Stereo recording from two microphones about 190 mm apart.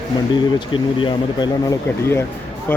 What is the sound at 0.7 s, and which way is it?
Speech, 25° left (ahead or behind).